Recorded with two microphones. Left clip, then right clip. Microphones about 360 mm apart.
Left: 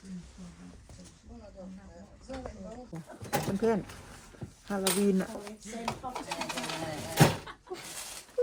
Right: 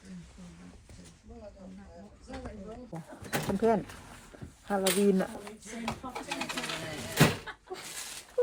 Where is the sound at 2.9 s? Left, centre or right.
Centre.